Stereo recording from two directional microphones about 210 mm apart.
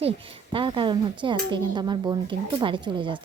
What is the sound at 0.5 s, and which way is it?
Speech, 25° right (ahead or behind).